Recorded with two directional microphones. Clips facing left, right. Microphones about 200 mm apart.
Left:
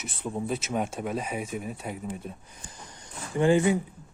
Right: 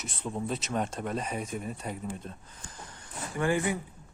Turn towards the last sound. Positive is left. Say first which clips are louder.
# left 6 dB
turn(degrees=20)  # may be behind; listen again after turning